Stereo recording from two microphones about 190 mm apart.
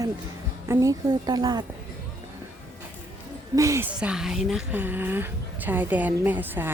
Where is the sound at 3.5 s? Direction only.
15° right (ahead or behind).